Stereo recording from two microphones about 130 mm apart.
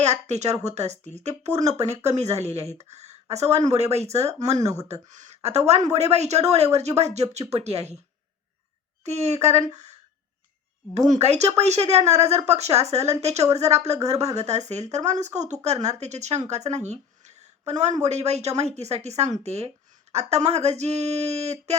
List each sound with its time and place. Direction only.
0.0 s speech: 60° right (ahead or behind)
9.0 s speech: 55° right (ahead or behind)